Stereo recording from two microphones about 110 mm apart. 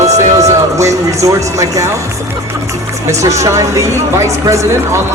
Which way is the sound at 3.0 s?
30° right (ahead or behind).